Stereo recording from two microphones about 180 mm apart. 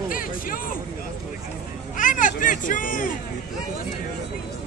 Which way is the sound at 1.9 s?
50° left (ahead or behind).